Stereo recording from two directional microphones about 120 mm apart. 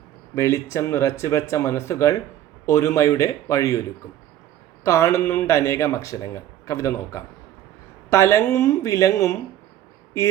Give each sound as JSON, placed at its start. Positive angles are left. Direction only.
{"t": 0.3, "sound": "speech", "side_deg": 25}